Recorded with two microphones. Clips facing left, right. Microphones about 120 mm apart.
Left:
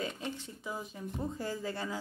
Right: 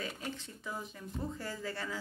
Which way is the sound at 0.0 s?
25° left (ahead or behind).